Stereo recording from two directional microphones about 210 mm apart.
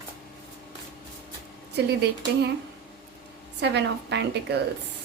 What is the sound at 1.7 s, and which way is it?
Speech, 50° right (ahead or behind).